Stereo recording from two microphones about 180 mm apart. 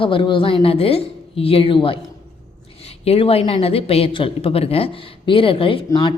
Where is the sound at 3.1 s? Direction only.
35° left (ahead or behind).